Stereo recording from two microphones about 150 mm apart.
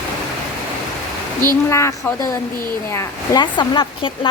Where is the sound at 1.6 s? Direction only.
20° left (ahead or behind).